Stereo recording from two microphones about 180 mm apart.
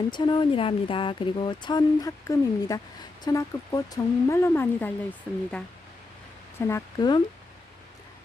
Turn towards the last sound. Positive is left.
turn(degrees=20)  # may be behind; listen again after turning